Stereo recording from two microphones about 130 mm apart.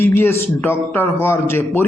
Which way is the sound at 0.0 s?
15° left (ahead or behind).